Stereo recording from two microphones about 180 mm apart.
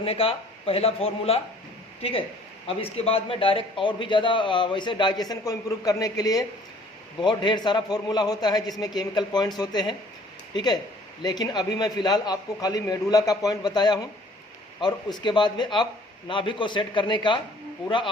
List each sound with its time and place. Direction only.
0.0 s a man's voice: 30° left (ahead or behind)